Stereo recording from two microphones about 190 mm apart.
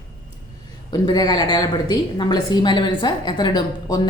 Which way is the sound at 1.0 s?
25° left (ahead or behind).